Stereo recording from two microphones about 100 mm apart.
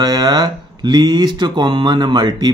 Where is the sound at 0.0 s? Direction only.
45° right (ahead or behind).